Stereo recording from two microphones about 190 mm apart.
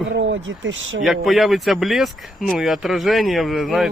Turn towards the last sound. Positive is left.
turn(degrees=0)  # may be behind; listen again after turning